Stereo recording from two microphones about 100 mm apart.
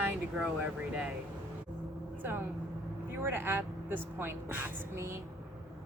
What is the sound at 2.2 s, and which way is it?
A woman's voice, 25° right (ahead or behind).